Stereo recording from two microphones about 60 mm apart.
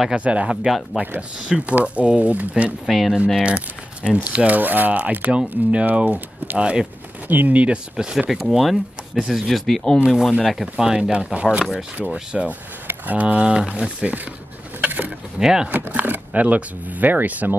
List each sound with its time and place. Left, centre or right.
0.1 s speech: right
2.9 s speech: centre
3.4 s speech: centre
6.6 s speech: centre
7.2 s speech: right; by 9.6 s centre
9.7 s speech: centre
12.0 s speech: centre
14.8 s bird: right
15.3 s speech: centre
15.7 s speech: right